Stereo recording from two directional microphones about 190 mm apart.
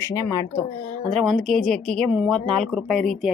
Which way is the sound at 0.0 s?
15° left (ahead or behind).